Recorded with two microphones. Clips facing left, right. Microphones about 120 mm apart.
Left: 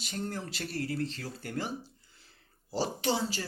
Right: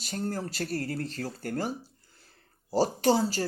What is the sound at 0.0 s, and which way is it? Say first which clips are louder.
Speech: right 4 dB; 40° right (ahead or behind).